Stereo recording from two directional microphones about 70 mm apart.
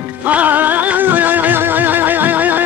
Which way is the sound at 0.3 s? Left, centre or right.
Right.